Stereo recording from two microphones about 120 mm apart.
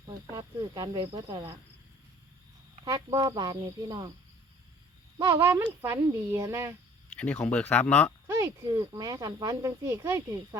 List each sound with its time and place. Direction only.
0.3 s speech: 35° right (ahead or behind)
2.9 s speech: 35° right (ahead or behind)
5.1 s speech: 35° right (ahead or behind)
5.8 s a child's voice: 25° right (ahead or behind)
7.4 s speech: 15° left (ahead or behind)
8.3 s a child's voice: 30° right (ahead or behind)